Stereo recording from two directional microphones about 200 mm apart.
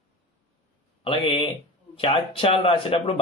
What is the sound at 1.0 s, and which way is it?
Speech, 25° left (ahead or behind).